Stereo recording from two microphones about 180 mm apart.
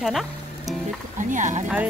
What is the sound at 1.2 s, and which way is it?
Speech, 45° right (ahead or behind).